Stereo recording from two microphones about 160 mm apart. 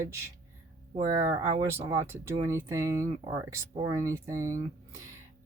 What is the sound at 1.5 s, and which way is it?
Speech, 35° right (ahead or behind).